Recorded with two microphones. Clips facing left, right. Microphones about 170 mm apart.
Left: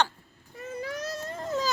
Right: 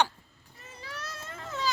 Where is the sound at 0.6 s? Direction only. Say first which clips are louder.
Left 10 dB; 50° left (ahead or behind).